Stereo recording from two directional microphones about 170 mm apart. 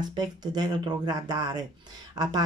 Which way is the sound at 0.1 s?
25° right (ahead or behind).